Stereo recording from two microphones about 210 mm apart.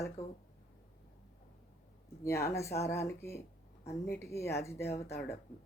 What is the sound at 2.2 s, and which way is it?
Speech, 15° left (ahead or behind).